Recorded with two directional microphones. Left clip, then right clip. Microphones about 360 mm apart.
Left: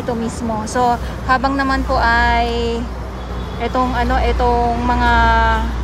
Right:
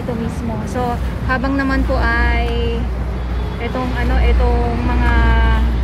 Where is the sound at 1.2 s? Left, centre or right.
Centre.